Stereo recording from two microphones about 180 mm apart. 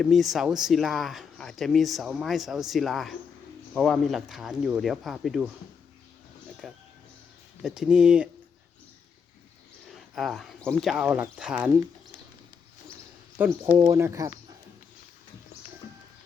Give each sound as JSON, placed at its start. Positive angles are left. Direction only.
{"t": 0.0, "sound": "speech", "side_deg": 0}
{"t": 6.6, "sound": "speech", "side_deg": 0}
{"t": 9.9, "sound": "speech", "side_deg": 0}
{"t": 13.4, "sound": "speech", "side_deg": -10}